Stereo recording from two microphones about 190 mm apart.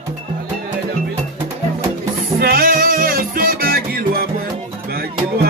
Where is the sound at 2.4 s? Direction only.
50° right (ahead or behind).